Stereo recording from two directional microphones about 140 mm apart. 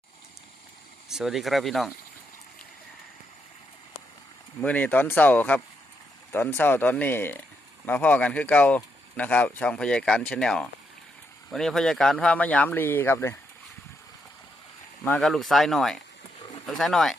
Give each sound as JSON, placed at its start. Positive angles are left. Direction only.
{"t": 1.1, "sound": "speech", "side_deg": -5}
{"t": 4.6, "sound": "speech", "side_deg": 10}
{"t": 15.2, "sound": "speech", "side_deg": 0}